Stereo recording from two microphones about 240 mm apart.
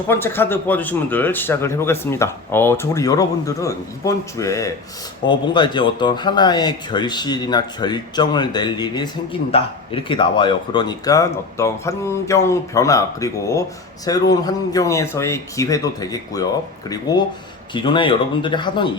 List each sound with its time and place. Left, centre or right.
0.1 s speech: centre